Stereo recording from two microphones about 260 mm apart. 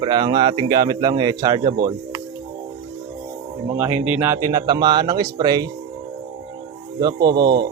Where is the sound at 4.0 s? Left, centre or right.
Centre.